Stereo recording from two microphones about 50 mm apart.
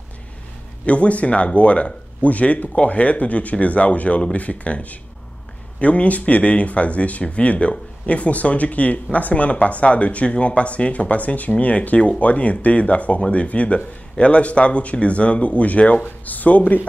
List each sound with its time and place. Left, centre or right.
0.8 s speech: left